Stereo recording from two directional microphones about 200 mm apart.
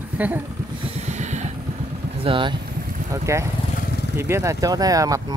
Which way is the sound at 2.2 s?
25° right (ahead or behind).